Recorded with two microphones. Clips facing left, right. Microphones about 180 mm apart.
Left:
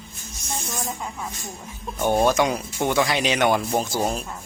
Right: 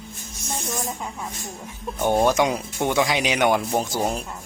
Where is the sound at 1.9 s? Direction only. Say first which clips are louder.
Even; 15° right (ahead or behind).